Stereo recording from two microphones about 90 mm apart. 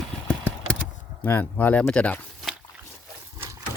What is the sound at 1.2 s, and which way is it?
Speech, 20° left (ahead or behind).